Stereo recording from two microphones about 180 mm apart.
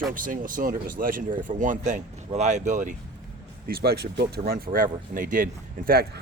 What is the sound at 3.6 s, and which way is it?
Speech, 60° right (ahead or behind).